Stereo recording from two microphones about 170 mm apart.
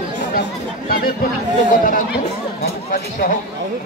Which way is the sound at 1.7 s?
50° left (ahead or behind).